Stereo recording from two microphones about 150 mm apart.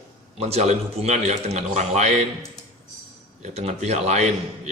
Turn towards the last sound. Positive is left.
turn(degrees=-45)  # may be behind; listen again after turning